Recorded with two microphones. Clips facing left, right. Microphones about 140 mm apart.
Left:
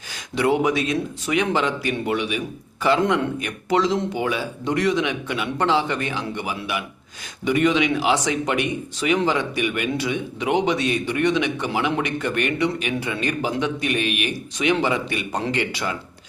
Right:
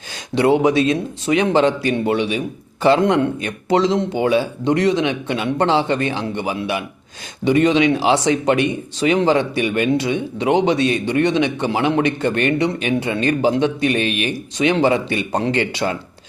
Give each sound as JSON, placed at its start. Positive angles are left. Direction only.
{"t": 0.3, "sound": "speech", "side_deg": -25}